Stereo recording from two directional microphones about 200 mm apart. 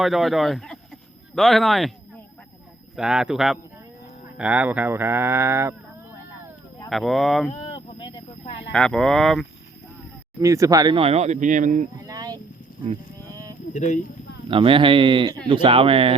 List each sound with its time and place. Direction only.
0.0 s speech: centre (ahead or behind)
2.9 s speech: 5° right (ahead or behind)
6.9 s speech: centre (ahead or behind)
7.5 s a sound: 30° left (ahead or behind)
8.7 s speech: 5° left (ahead or behind)
10.4 s speech: 15° right (ahead or behind); by 11.9 s 40° right (ahead or behind)
12.0 s a sound: 20° right (ahead or behind)
13.7 s speech: 40° left (ahead or behind)
14.5 s speech: 25° right (ahead or behind)